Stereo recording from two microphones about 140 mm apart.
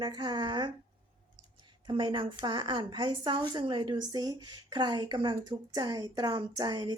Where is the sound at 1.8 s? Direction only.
35° right (ahead or behind).